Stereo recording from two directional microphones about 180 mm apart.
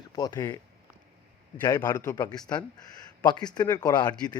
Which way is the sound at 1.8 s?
20° left (ahead or behind).